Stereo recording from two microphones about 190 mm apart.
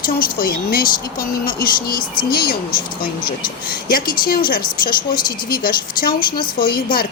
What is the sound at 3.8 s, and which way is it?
Speech, 50° left (ahead or behind).